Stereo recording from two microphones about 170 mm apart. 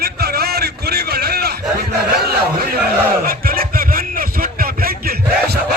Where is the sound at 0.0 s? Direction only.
65° right (ahead or behind).